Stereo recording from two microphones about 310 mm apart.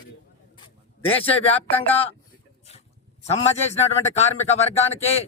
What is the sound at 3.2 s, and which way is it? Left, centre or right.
A man's voice, left.